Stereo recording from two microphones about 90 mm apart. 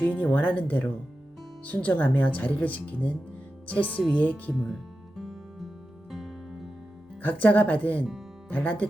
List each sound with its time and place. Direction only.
0.0 s speech: 15° left (ahead or behind)
4.5 s music: centre (ahead or behind)
7.2 s speech: 20° left (ahead or behind)